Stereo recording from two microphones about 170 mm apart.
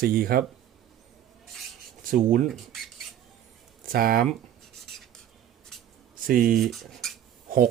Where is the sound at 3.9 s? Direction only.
60° right (ahead or behind).